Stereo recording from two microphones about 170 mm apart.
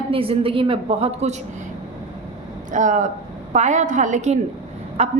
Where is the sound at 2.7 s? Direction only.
45° right (ahead or behind).